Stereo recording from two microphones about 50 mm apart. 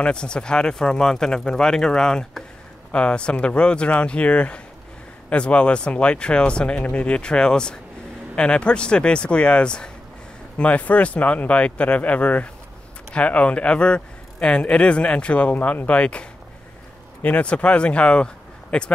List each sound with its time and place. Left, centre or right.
0.0 s speech: centre